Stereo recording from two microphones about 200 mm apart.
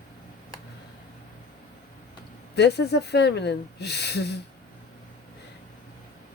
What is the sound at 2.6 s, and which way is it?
Speech, 55° left (ahead or behind).